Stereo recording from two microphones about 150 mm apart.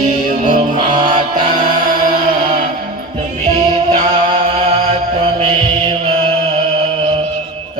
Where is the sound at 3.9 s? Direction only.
45° right (ahead or behind).